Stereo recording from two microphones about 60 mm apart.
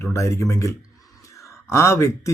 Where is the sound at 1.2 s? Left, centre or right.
Left.